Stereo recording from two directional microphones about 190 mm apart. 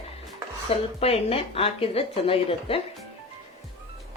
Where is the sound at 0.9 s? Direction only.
30° left (ahead or behind).